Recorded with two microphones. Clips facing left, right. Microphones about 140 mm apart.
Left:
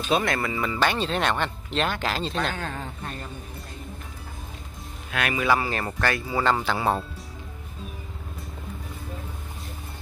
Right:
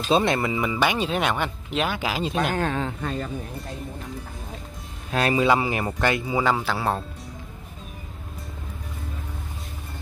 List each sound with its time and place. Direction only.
0.1 s speech: 20° right (ahead or behind)
2.7 s speech: 90° right
5.1 s speech: 30° right (ahead or behind); by 6.5 s 15° right (ahead or behind)
6.5 s speech: centre (ahead or behind)